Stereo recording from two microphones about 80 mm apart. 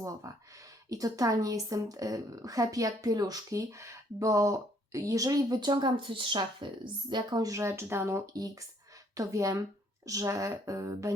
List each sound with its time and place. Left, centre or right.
0.0 s a woman's voice: right
7.1 s a woman's voice: right
7.5 s speech: right
8.3 s a woman's voice: right